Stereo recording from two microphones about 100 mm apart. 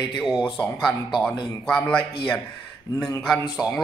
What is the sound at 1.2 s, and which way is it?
Speech, 10° left (ahead or behind).